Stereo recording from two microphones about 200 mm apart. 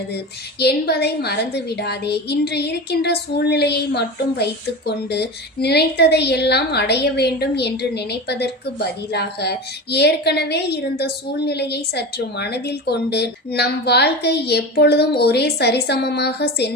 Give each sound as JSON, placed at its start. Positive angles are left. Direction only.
{"t": 0.6, "sound": "a woman's voice", "side_deg": 55}